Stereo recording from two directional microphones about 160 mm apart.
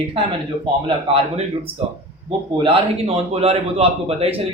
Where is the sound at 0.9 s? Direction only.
35° right (ahead or behind).